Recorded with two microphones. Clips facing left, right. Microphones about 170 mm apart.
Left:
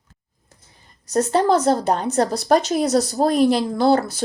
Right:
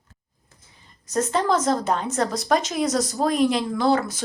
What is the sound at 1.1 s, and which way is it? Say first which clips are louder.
Speech: left 4 dB; 35° left (ahead or behind).